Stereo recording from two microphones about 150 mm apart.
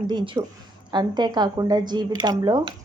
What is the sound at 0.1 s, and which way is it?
A woman's voice, 30° right (ahead or behind).